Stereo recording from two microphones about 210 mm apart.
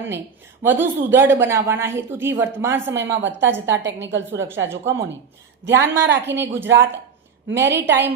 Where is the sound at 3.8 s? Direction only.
60° right (ahead or behind).